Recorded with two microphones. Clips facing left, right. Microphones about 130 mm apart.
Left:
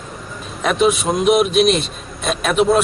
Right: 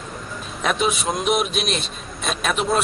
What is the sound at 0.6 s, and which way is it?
A man's voice, centre (ahead or behind).